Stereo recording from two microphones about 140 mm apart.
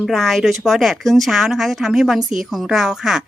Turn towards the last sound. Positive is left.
turn(degrees=-5)  # may be behind; listen again after turning